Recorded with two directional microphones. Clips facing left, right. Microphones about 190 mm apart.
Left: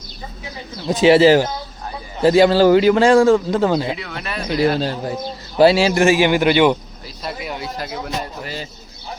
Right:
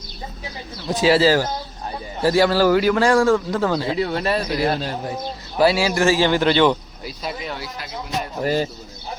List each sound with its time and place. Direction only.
0.9 s a man's voice: 20° left (ahead or behind)
3.9 s speech: 35° right (ahead or behind)
4.4 s a man's voice: 30° left (ahead or behind); by 6.7 s 15° left (ahead or behind)
8.4 s speech: 45° right (ahead or behind)